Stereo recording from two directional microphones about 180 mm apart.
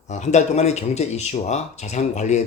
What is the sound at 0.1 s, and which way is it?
Speech, 40° left (ahead or behind).